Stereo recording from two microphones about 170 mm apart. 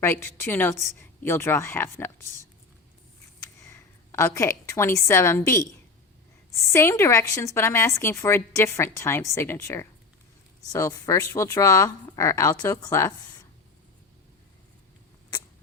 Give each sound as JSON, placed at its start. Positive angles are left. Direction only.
{"t": 0.0, "sound": "speech", "side_deg": 10}
{"t": 3.4, "sound": "a woman's voice", "side_deg": 15}
{"t": 6.7, "sound": "speech", "side_deg": 15}